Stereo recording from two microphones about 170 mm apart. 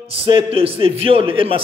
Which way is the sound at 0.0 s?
35° right (ahead or behind).